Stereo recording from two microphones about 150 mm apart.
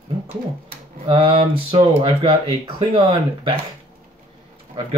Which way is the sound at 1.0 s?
35° right (ahead or behind).